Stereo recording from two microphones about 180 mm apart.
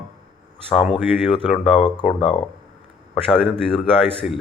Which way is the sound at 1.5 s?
30° left (ahead or behind).